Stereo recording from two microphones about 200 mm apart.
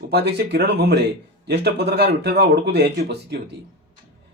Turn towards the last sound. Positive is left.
turn(degrees=-55)  # may be behind; listen again after turning